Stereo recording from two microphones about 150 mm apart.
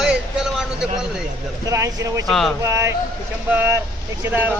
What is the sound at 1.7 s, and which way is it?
Speech, 20° right (ahead or behind).